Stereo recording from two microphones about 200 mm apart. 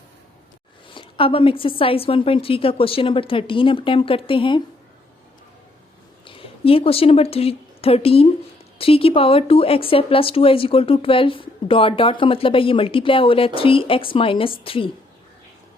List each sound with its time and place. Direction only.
0.9 s a sound: 25° left (ahead or behind)
1.8 s speech: 30° left (ahead or behind)
6.2 s speech: 25° left (ahead or behind)